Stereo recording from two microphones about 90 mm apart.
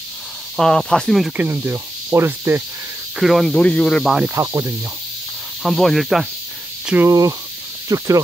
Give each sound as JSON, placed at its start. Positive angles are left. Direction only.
{"t": 0.6, "sound": "speech", "side_deg": 5}
{"t": 1.3, "sound": "speech", "side_deg": -20}
{"t": 3.2, "sound": "speech", "side_deg": 0}
{"t": 4.4, "sound": "speech", "side_deg": -30}
{"t": 5.6, "sound": "speech", "side_deg": 0}
{"t": 7.1, "sound": "speech", "side_deg": -40}